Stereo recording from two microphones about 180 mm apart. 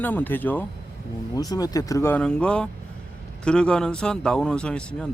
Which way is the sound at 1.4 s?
20° left (ahead or behind).